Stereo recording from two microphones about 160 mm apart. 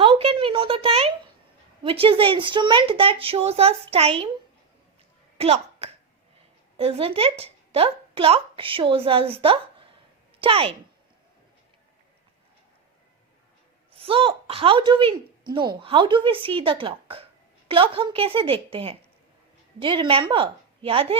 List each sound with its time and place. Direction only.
0.0 s a sound: 35° right (ahead or behind)
1.8 s speech: 35° right (ahead or behind)
5.4 s speech: 40° right (ahead or behind)
13.9 s speech: 35° right (ahead or behind)